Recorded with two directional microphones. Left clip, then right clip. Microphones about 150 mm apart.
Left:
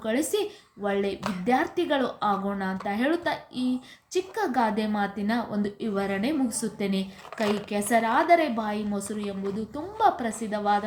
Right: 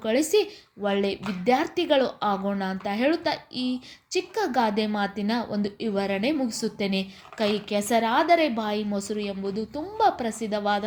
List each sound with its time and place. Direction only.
0.0 s a woman's voice: 25° right (ahead or behind)